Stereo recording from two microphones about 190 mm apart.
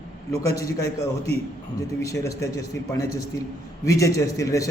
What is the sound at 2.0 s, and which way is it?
A man's voice, 15° left (ahead or behind).